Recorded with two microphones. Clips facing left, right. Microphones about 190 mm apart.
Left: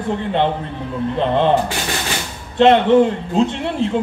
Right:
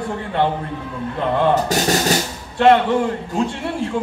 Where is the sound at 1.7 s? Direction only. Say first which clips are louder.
Right 6 dB; 40° right (ahead or behind).